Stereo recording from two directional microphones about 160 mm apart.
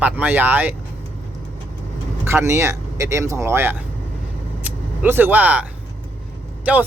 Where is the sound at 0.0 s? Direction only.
10° right (ahead or behind).